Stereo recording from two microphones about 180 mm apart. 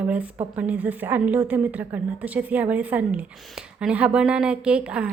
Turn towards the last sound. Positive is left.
turn(degrees=-5)  # may be behind; listen again after turning